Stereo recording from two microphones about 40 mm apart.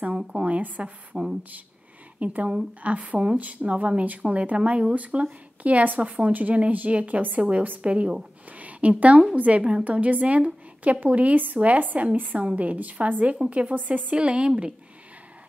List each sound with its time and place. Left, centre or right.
0.5 s speech: right
1.1 s a woman's voice: centre
2.1 s speech: right
4.9 s a woman's voice: right
9.6 s speech: right
14.1 s a woman's voice: right